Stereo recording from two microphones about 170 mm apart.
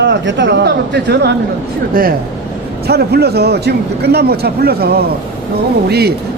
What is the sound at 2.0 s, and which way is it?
Speech, 60° right (ahead or behind).